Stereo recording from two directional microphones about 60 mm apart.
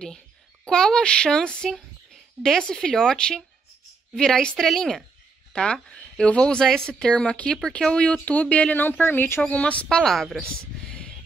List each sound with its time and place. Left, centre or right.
0.7 s speech: centre
5.5 s speech: centre; by 9.4 s left
9.4 s speech: left
10.1 s speech: centre
10.9 s a sound: centre